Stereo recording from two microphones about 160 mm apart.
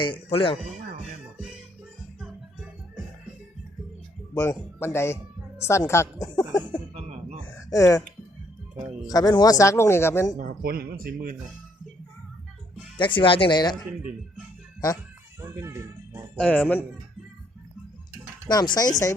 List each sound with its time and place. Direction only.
0.0 s speech: 35° left (ahead or behind)
4.4 s a woman's voice: 15° left (ahead or behind)
6.9 s a sound: 40° right (ahead or behind)
7.4 s a sound: 20° left (ahead or behind)
9.0 s speech: 25° left (ahead or behind)
10.3 s speech: 55° right (ahead or behind)
13.0 s speech: 30° left (ahead or behind)
15.4 s speech: 20° right (ahead or behind)
16.4 s speech: 10° left (ahead or behind)
18.4 s speech: 25° left (ahead or behind)